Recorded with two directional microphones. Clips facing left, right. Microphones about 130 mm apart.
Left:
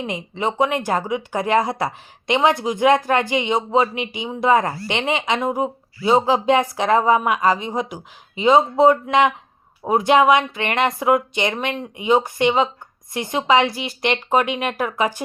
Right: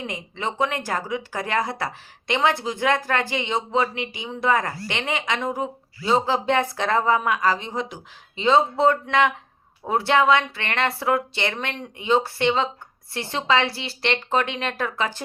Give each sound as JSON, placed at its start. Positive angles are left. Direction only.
{"t": 0.0, "sound": "speech", "side_deg": 20}